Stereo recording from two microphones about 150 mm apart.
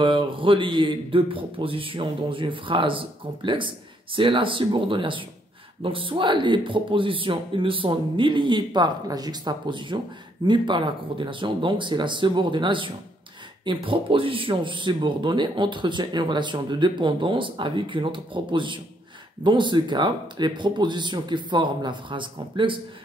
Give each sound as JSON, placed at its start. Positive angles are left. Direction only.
{"t": 0.0, "sound": "a man's voice", "side_deg": -35}